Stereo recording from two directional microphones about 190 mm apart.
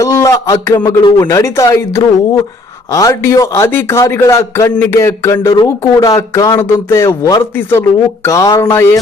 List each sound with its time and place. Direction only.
0.0 s speech: 15° left (ahead or behind)
2.9 s speech: 15° left (ahead or behind)